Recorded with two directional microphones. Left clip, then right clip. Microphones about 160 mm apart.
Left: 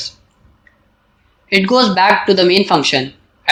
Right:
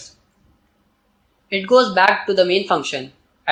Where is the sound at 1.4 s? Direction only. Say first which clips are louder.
Left 2 dB; 30° left (ahead or behind).